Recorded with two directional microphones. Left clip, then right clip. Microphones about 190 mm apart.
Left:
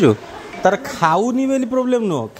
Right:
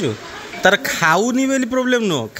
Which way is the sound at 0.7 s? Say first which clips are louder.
Right 1 dB; centre (ahead or behind).